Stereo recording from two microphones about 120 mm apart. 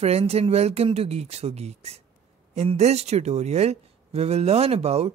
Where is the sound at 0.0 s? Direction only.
60° right (ahead or behind).